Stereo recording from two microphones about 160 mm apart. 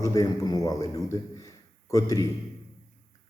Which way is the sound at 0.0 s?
20° left (ahead or behind).